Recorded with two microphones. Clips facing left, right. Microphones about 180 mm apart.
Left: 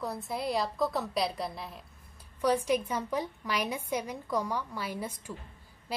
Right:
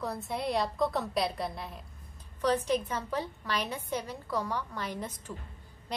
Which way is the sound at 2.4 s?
10° left (ahead or behind).